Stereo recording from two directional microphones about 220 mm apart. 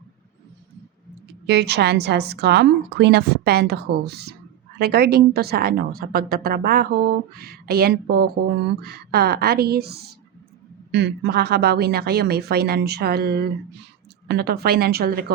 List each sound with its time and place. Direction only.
1.3 s a woman's voice: 50° right (ahead or behind)